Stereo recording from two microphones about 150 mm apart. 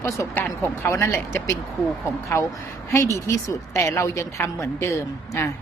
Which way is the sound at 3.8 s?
20° left (ahead or behind).